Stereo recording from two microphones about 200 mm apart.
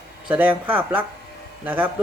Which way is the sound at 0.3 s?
5° right (ahead or behind).